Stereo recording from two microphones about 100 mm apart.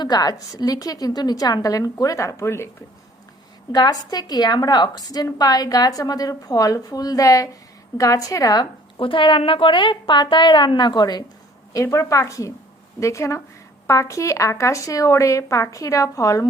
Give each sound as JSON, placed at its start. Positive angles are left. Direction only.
{"t": 0.0, "sound": "a woman's voice", "side_deg": 40}
{"t": 3.7, "sound": "a woman's voice", "side_deg": 40}
{"t": 9.0, "sound": "a woman's voice", "side_deg": 60}
{"t": 11.7, "sound": "a woman's voice", "side_deg": 30}